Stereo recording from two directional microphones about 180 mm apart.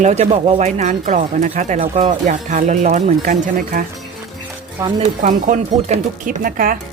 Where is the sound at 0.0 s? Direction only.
40° right (ahead or behind).